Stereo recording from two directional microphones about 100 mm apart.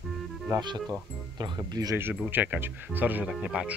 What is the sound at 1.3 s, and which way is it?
Speech, 45° right (ahead or behind).